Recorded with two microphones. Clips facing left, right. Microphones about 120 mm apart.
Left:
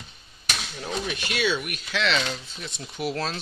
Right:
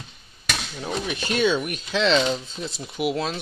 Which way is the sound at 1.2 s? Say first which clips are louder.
Right 7 dB; 40° right (ahead or behind).